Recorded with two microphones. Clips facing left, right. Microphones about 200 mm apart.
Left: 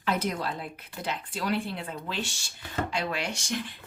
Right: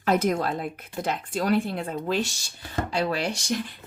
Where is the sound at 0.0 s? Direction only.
45° right (ahead or behind).